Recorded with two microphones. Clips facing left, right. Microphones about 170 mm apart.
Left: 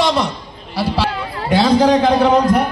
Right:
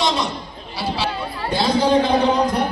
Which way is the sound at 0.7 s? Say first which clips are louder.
Left 5 dB; 65° left (ahead or behind).